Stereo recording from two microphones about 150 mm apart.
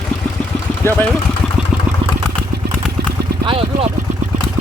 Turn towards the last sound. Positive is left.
turn(degrees=-35)  # may be behind; listen again after turning